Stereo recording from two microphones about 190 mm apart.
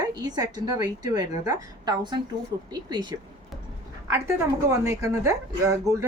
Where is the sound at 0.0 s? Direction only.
20° right (ahead or behind).